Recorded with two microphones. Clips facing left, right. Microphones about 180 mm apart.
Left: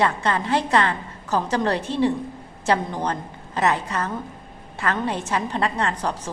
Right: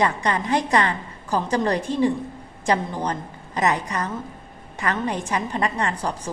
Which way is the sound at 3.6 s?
15° right (ahead or behind).